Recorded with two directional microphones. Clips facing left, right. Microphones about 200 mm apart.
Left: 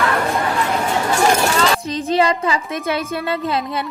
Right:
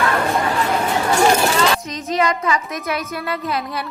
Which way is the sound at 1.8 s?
30° left (ahead or behind).